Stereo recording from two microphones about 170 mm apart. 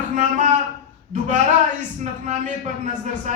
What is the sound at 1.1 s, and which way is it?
A man's voice, 45° right (ahead or behind).